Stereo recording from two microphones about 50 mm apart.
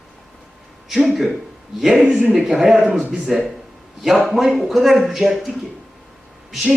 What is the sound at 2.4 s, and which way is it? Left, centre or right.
A man's voice, centre.